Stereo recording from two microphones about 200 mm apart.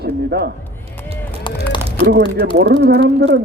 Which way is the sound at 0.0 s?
55° right (ahead or behind).